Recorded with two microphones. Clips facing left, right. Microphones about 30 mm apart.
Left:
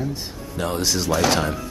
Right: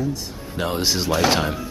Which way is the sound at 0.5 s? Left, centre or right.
Right.